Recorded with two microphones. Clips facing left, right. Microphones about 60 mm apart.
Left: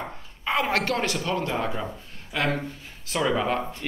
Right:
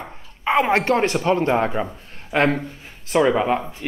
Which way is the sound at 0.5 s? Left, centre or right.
Right.